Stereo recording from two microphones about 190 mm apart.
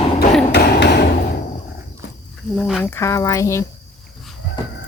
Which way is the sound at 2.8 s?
15° left (ahead or behind).